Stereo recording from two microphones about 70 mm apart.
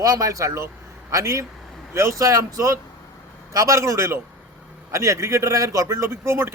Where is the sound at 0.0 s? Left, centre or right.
Right.